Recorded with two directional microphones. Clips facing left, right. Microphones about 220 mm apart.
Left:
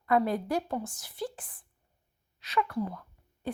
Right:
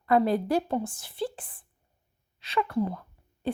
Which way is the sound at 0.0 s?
30° right (ahead or behind).